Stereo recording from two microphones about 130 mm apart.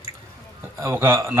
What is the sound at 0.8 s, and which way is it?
Speech, 20° right (ahead or behind).